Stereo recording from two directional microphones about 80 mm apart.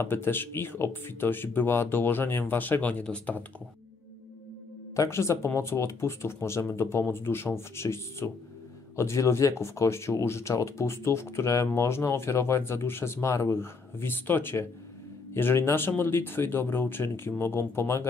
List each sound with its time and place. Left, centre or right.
0.0 s speech: left
4.9 s speech: left